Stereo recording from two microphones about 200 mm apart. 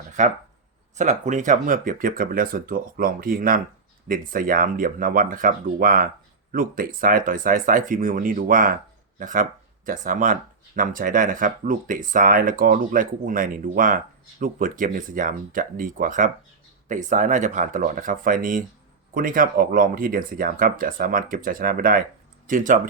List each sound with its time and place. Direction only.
0.2 s speech: 40° right (ahead or behind)